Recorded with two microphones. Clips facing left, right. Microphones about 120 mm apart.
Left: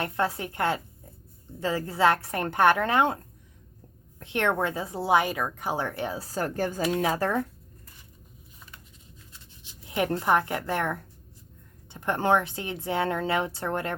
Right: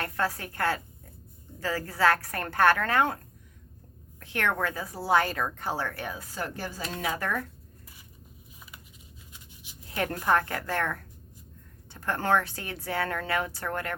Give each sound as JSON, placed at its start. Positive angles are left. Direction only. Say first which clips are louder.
{"t": 0.0, "sound": "a woman's voice", "louder": "left 3 dB", "side_deg": 20}
{"t": 4.2, "sound": "a woman's voice", "louder": "left 3 dB", "side_deg": 20}
{"t": 7.0, "sound": "speech", "louder": "left 1 dB", "side_deg": 30}
{"t": 9.3, "sound": "a sound", "louder": "right 1 dB", "side_deg": -15}
{"t": 9.9, "sound": "a woman's voice", "louder": "left 2 dB", "side_deg": 20}